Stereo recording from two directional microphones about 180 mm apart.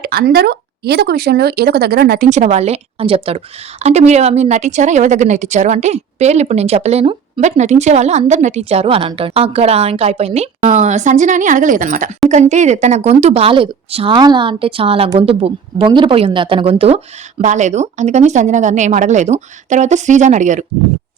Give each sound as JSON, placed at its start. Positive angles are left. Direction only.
{"t": 0.0, "sound": "speech", "side_deg": -55}
{"t": 17.4, "sound": "speech", "side_deg": -40}